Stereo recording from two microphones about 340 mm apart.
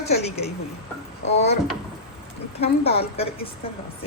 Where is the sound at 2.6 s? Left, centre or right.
Centre.